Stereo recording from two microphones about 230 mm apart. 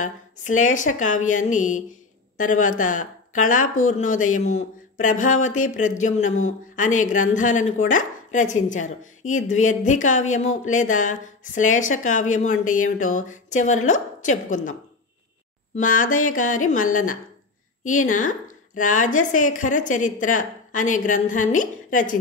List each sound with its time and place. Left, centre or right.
0.0 s speech: left